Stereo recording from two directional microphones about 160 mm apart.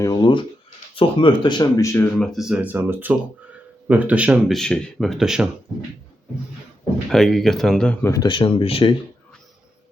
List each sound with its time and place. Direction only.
0.0 s a sound: 25° left (ahead or behind)
0.9 s speech: 30° left (ahead or behind)
2.1 s speech: 5° left (ahead or behind)
7.1 s speech: centre (ahead or behind)
8.1 s speech: 25° left (ahead or behind)